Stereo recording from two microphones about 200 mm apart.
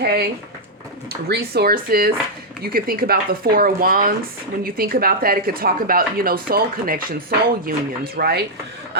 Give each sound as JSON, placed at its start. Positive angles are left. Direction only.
{"t": 0.0, "sound": "speech", "side_deg": -50}
{"t": 1.3, "sound": "speech", "side_deg": -50}